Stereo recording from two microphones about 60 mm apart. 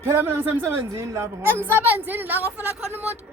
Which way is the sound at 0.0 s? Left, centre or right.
Right.